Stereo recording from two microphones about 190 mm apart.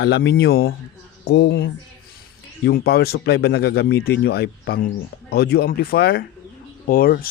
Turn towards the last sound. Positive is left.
turn(degrees=50)  # may be behind; listen again after turning